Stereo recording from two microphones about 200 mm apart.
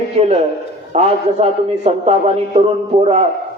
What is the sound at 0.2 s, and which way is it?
A man's voice, 30° right (ahead or behind).